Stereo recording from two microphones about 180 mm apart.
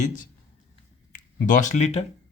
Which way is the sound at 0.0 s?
45° left (ahead or behind).